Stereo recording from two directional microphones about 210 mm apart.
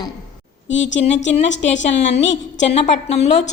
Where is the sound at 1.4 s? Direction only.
35° left (ahead or behind).